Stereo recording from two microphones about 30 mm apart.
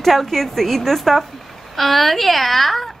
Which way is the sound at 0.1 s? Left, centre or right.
Centre.